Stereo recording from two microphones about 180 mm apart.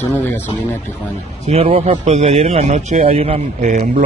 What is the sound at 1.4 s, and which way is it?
A man's voice, 35° right (ahead or behind).